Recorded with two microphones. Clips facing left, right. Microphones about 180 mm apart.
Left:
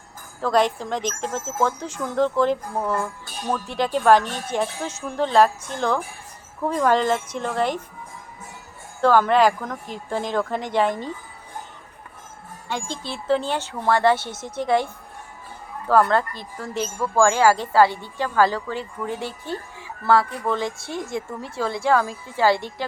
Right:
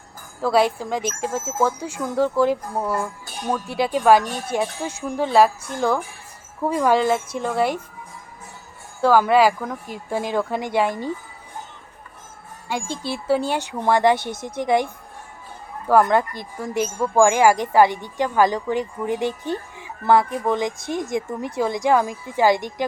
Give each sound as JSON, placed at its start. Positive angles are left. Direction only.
{"t": 0.4, "sound": "speech", "side_deg": -10}
{"t": 9.0, "sound": "speech", "side_deg": -10}
{"t": 12.6, "sound": "speech", "side_deg": -10}
{"t": 15.9, "sound": "speech", "side_deg": -15}